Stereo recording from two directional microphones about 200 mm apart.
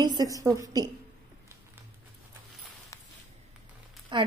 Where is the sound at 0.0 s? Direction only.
20° right (ahead or behind).